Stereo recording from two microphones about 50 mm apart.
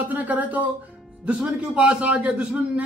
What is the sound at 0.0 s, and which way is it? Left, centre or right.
A man's voice, right.